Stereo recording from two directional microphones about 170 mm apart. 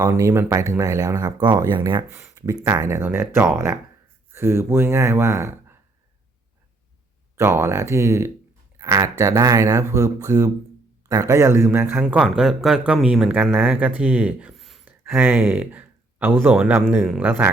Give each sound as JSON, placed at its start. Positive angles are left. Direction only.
{"t": 0.0, "sound": "speech", "side_deg": -20}
{"t": 2.1, "sound": "a man's voice", "side_deg": -15}
{"t": 7.3, "sound": "a man's voice", "side_deg": -15}